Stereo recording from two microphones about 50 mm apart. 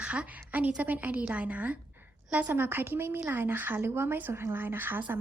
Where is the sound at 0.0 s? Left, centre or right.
Right.